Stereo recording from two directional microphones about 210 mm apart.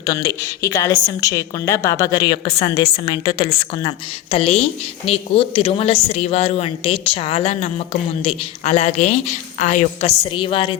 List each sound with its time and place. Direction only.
0.0 s a woman's voice: 20° left (ahead or behind)